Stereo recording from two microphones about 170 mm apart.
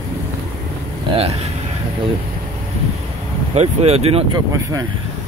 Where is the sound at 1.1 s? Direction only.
35° right (ahead or behind).